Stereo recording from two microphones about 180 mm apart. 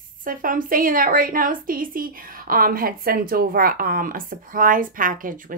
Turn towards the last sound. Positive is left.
turn(degrees=-50)  # may be behind; listen again after turning